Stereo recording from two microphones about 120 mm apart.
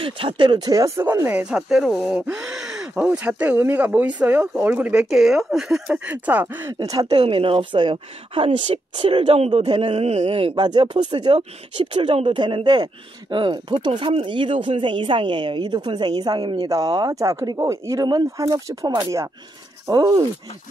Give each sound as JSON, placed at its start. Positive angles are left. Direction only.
{"t": 0.0, "sound": "speech", "side_deg": -45}
{"t": 1.0, "sound": "speech", "side_deg": -20}
{"t": 1.4, "sound": "speech", "side_deg": -5}
{"t": 6.8, "sound": "speech", "side_deg": -30}